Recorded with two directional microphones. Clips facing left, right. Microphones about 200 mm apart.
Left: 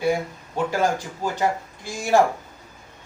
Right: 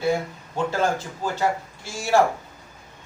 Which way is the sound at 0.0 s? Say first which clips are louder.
Left 1 dB; 15° left (ahead or behind).